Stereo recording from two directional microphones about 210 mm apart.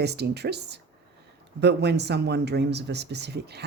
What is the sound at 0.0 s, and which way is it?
Speech, 50° right (ahead or behind).